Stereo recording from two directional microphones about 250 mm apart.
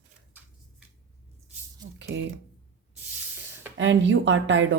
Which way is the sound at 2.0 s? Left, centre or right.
Right.